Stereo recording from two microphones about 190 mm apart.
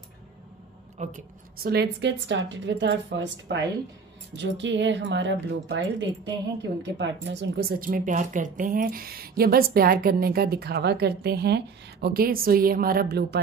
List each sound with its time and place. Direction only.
0.9 s speech: 35° right (ahead or behind)
1.6 s a woman's voice: 60° right (ahead or behind)